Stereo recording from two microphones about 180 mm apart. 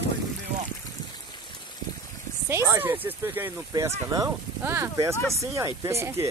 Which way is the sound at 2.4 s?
15° right (ahead or behind).